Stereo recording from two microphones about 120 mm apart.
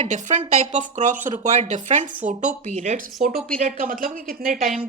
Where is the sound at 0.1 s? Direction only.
85° right.